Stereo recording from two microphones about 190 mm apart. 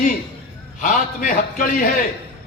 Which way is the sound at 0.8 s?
45° left (ahead or behind).